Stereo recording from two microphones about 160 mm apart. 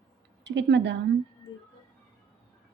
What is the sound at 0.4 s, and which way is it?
Speech, 90° right.